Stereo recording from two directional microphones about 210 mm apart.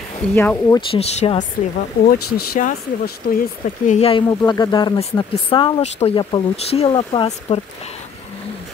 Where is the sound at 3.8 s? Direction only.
30° left (ahead or behind).